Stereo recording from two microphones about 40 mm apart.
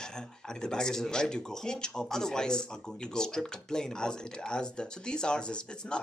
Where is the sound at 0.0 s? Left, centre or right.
Centre.